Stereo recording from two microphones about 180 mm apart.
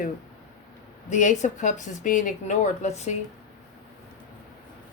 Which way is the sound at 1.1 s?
40° left (ahead or behind).